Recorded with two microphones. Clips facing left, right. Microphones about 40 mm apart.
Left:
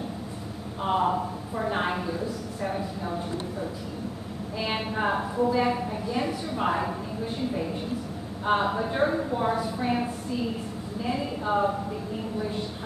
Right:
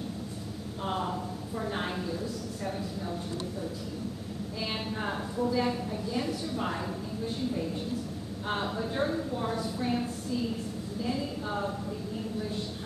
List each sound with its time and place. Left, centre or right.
0.8 s a woman's voice: left
4.6 s a woman's voice: left